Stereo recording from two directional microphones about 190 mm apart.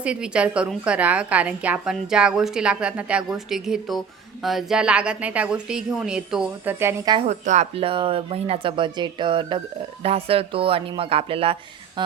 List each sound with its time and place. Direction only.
0.0 s a woman's voice: 5° right (ahead or behind); by 7.3 s 20° right (ahead or behind)
7.3 s speech: 40° right (ahead or behind)